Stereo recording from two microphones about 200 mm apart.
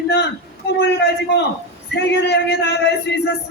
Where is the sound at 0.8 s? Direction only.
55° left (ahead or behind).